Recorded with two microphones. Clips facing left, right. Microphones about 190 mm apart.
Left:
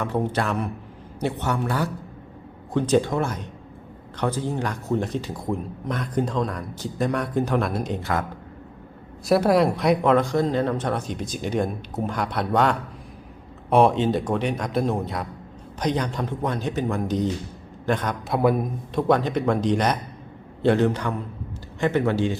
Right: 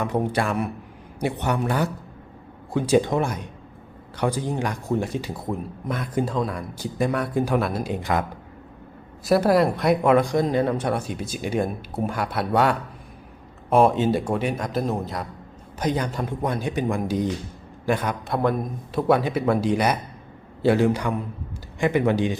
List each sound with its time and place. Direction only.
0.0 s speech: 15° right (ahead or behind)
9.2 s a man's voice: centre (ahead or behind)
18.3 s a man's voice: 5° left (ahead or behind)
18.9 s speech: 5° right (ahead or behind)